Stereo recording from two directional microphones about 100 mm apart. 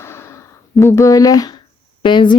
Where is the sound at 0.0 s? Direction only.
25° left (ahead or behind).